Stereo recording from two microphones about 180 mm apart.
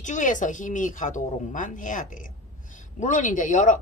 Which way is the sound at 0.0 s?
45° left (ahead or behind).